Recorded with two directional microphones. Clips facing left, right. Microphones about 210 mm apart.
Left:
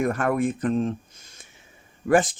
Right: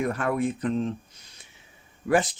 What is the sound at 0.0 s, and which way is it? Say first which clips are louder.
Speech: left 3 dB; 45° left (ahead or behind).